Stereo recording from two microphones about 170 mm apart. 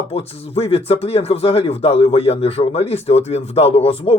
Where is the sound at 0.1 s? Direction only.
35° left (ahead or behind).